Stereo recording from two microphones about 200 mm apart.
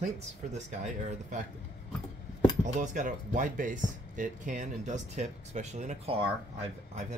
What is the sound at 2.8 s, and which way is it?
Speech, 40° right (ahead or behind).